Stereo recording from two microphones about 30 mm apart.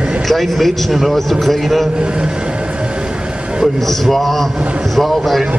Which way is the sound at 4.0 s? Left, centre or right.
Centre.